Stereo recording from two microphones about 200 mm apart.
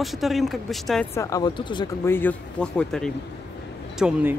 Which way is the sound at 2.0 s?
10° left (ahead or behind).